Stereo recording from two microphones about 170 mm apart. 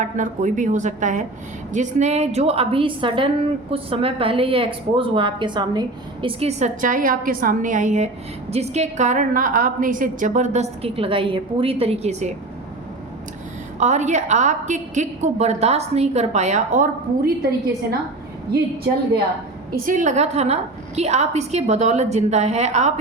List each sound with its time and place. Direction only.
0.0 s a woman's voice: 45° right (ahead or behind); by 5.8 s 25° right (ahead or behind)
6.2 s a woman's voice: 40° right (ahead or behind)
13.7 s a woman's voice: 45° right (ahead or behind)
19.7 s a woman's voice: 55° right (ahead or behind)